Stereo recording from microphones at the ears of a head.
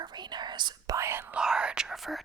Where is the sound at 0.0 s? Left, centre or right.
Right.